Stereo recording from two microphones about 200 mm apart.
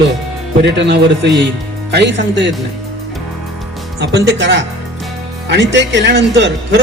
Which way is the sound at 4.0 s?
60° right (ahead or behind).